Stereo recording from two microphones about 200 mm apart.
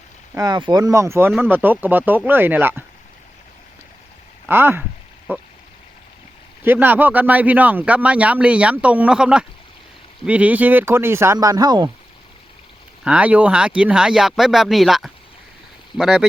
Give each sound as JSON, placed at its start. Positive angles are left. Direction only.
{"t": 0.3, "sound": "a man's voice", "side_deg": -20}
{"t": 4.4, "sound": "a man's voice", "side_deg": -10}
{"t": 6.6, "sound": "a man's voice", "side_deg": -10}
{"t": 13.1, "sound": "speech", "side_deg": -5}